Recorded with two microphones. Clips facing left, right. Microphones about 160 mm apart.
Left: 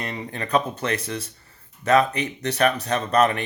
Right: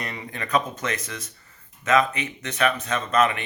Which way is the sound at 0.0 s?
30° left (ahead or behind).